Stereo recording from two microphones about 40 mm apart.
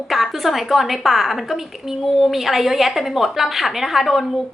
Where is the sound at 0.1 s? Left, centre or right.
Centre.